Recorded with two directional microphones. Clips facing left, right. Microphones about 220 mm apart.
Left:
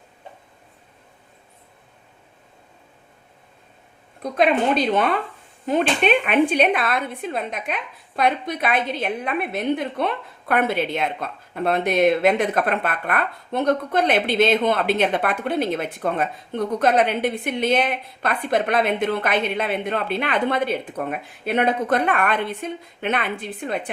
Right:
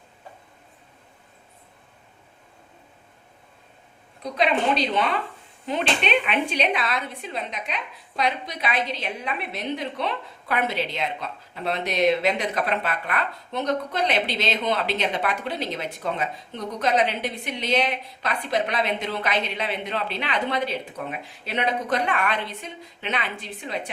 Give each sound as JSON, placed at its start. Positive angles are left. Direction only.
{"t": 4.2, "sound": "speech", "side_deg": 50}